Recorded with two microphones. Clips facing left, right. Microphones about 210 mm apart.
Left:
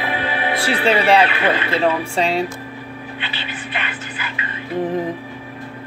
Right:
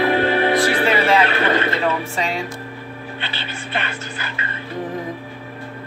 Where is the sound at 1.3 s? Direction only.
45° right (ahead or behind).